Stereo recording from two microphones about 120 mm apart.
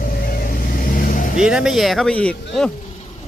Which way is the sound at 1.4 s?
5° right (ahead or behind).